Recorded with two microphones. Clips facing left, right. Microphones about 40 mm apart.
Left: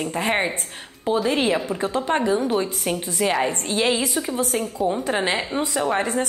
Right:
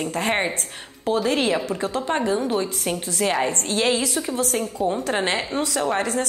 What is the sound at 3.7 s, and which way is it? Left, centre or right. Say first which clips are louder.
Speech: even; left.